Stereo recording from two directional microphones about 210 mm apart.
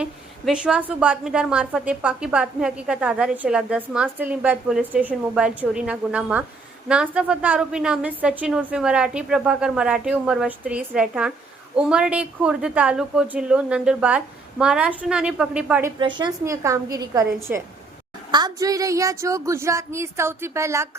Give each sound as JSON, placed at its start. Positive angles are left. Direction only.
{"t": 0.0, "sound": "a woman's voice", "side_deg": -5}
{"t": 16.0, "sound": "a woman's voice", "side_deg": -20}